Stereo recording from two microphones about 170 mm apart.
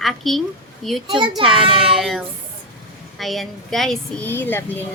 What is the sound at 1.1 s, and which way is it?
Speech, 30° right (ahead or behind).